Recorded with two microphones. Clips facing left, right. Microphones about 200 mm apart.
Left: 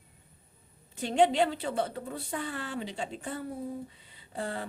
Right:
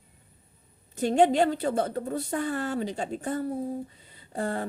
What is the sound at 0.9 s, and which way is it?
Speech, 45° right (ahead or behind).